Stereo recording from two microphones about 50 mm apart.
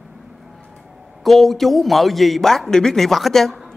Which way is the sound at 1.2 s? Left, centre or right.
Centre.